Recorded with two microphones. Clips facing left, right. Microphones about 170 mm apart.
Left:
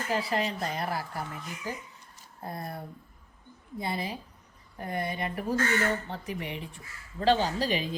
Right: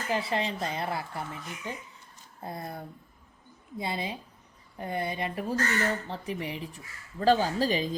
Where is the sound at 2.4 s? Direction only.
25° right (ahead or behind).